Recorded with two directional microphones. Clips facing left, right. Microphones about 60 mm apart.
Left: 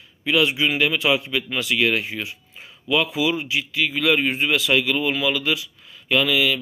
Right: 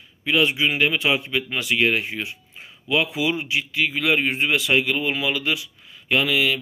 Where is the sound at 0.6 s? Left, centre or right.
Right.